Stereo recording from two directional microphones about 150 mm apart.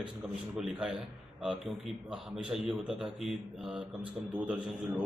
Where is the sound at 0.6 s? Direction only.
Centre (ahead or behind).